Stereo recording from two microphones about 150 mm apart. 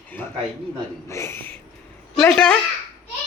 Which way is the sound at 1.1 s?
15° left (ahead or behind).